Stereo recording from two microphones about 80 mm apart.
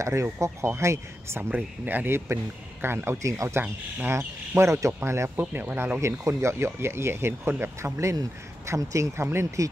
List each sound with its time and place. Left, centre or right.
0.0 s speech: right
1.5 s speech: right
5.3 s speech: right
5.9 s speech: right